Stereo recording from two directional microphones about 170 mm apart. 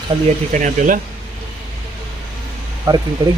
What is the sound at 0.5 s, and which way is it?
Speech, 50° right (ahead or behind).